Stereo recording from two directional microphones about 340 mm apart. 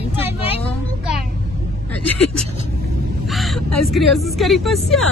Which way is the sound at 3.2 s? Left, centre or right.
Centre.